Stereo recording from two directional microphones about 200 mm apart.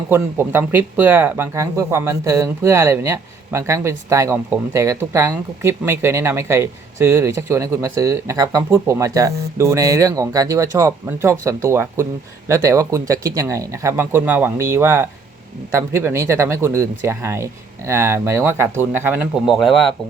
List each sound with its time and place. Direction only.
0.1 s speech: 10° right (ahead or behind)